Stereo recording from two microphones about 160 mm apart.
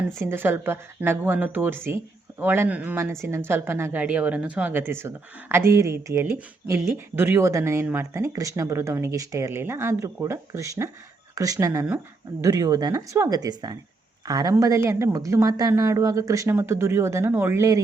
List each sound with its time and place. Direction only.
0.3 s a woman's voice: 15° right (ahead or behind)